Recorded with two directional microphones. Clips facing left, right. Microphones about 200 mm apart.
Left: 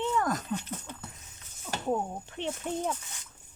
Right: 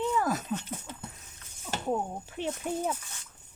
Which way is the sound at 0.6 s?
10° right (ahead or behind).